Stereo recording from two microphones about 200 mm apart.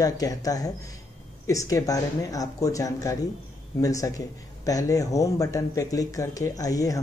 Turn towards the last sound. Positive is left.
turn(degrees=15)  # may be behind; listen again after turning